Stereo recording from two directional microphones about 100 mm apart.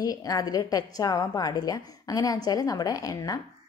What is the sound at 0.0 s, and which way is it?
Speech, 35° left (ahead or behind).